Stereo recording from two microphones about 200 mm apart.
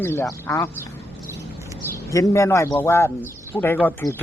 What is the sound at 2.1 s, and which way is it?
Speech, 15° left (ahead or behind).